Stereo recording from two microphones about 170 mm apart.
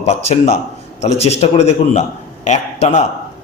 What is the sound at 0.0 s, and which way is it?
A man's voice, 40° left (ahead or behind).